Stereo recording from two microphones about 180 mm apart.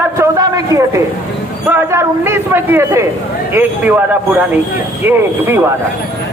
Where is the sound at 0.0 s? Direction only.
15° right (ahead or behind).